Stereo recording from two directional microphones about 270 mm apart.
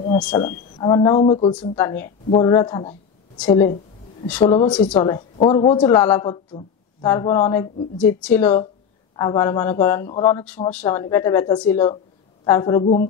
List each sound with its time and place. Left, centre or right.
0.5 s a woman's voice: centre
1.6 s a woman's voice: centre
3.3 s a woman's voice: centre
4.7 s a woman's voice: centre